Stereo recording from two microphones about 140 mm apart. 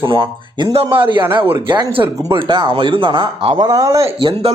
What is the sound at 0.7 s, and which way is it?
A man's voice, 35° right (ahead or behind).